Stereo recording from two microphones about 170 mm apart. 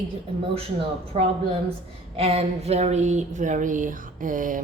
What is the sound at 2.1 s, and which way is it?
Speech, 35° right (ahead or behind).